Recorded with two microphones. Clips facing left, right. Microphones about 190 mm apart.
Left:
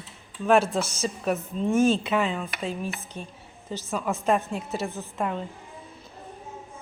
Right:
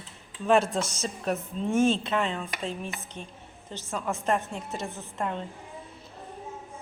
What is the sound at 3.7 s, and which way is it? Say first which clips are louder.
A woman's voice: left 3 dB; 10° left (ahead or behind).